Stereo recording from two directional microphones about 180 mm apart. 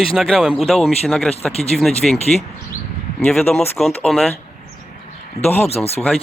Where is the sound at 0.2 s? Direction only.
Centre (ahead or behind).